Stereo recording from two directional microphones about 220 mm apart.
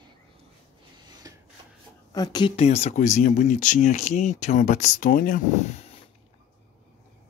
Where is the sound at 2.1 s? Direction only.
20° left (ahead or behind).